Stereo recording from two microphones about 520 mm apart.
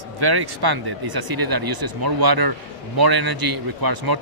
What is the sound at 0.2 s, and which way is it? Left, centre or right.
Speech, right.